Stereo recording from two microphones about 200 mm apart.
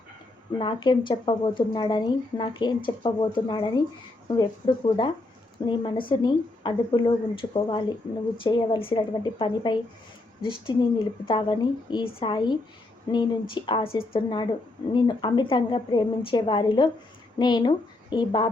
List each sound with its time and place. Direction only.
0.6 s a woman's voice: 25° left (ahead or behind)